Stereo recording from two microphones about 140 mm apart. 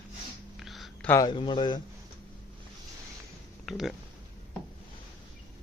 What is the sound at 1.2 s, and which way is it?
Speech, 30° left (ahead or behind).